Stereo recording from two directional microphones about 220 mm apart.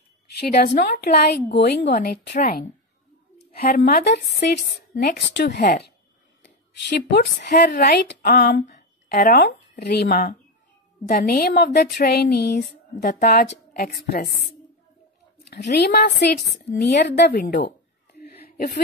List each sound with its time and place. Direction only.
0.4 s a woman's voice: 45° left (ahead or behind)
7.1 s a woman's voice: 50° left (ahead or behind)
15.5 s a woman's voice: 50° left (ahead or behind)
18.4 s a sound: 45° left (ahead or behind)